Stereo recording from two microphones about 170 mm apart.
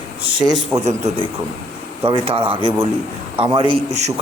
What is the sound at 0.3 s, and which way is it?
Speech, centre (ahead or behind).